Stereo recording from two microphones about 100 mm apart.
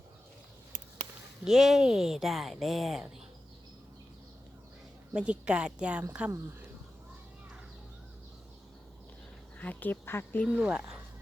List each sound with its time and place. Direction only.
1.5 s speech: 5° right (ahead or behind)
5.1 s speech: 10° right (ahead or behind)
9.6 s speech: 20° left (ahead or behind)
10.5 s speech: 10° right (ahead or behind)